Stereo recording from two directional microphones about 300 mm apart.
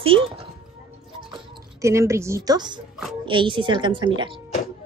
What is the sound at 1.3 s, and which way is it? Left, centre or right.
Speech, centre.